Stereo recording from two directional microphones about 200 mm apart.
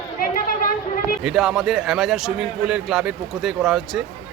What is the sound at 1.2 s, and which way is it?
A man's voice, 5° right (ahead or behind).